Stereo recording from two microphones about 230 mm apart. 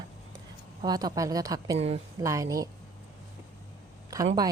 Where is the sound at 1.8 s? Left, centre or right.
Right.